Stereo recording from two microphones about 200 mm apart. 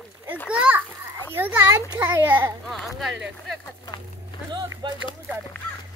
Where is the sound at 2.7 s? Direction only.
Centre (ahead or behind).